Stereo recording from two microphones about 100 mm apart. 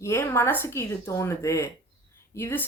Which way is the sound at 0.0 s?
25° left (ahead or behind).